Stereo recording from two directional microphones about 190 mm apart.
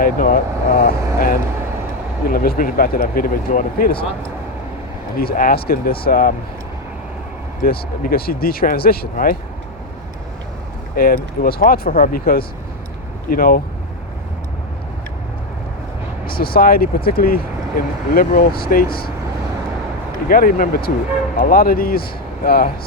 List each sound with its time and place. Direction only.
0.0 s speech: 50° left (ahead or behind)
5.2 s speech: 50° left (ahead or behind)
7.6 s speech: 50° left (ahead or behind)
10.9 s speech: 50° left (ahead or behind)
16.2 s speech: 55° left (ahead or behind)
20.2 s speech: 50° left (ahead or behind)